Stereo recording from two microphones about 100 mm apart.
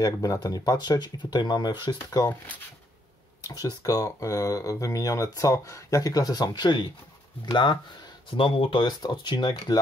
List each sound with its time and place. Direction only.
0.0 s speech: 35° left (ahead or behind)
3.4 s speech: 35° left (ahead or behind); by 7.8 s 55° left (ahead or behind)
8.4 s speech: 65° left (ahead or behind)
9.0 s speech: 50° left (ahead or behind)